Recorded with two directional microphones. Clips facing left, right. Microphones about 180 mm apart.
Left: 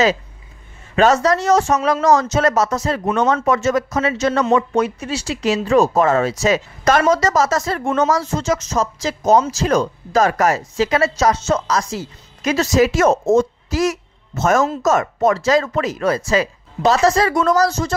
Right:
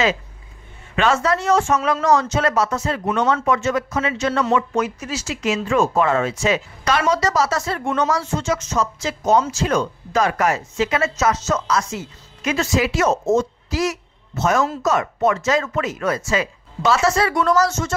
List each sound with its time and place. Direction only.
0.9 s speech: 40° left (ahead or behind)